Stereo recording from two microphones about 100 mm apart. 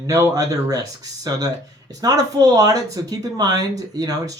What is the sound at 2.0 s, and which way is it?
Speech, 40° right (ahead or behind).